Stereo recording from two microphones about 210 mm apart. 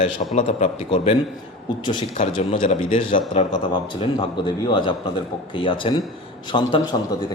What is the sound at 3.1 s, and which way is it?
Speech, 30° left (ahead or behind).